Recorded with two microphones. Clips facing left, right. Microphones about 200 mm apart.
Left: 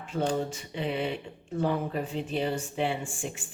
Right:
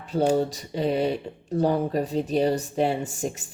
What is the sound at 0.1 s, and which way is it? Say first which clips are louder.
Speech: right 7 dB; 35° right (ahead or behind).